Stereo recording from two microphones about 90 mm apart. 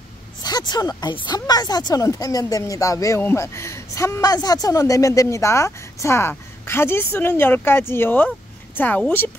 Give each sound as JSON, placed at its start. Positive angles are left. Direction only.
{"t": 0.4, "sound": "a woman's voice", "side_deg": 50}
{"t": 3.2, "sound": "a woman's voice", "side_deg": 30}